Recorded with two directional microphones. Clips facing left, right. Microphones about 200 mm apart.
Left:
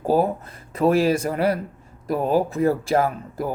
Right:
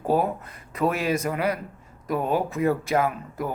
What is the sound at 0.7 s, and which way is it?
Speech, 30° left (ahead or behind).